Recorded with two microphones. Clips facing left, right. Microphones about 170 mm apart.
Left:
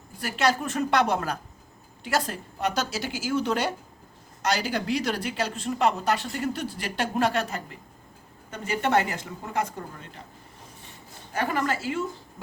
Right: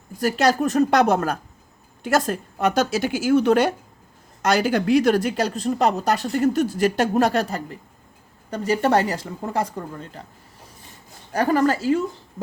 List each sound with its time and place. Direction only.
0.2 s speech: 40° right (ahead or behind)
11.3 s speech: 35° right (ahead or behind)